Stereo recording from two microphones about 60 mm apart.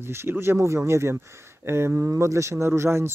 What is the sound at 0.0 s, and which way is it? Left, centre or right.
Speech, right.